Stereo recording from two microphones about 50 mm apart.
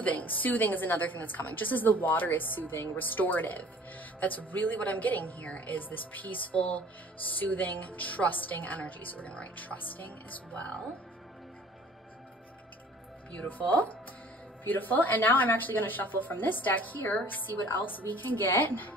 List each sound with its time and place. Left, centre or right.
0.0 s a woman's voice: left
13.5 s a woman's voice: left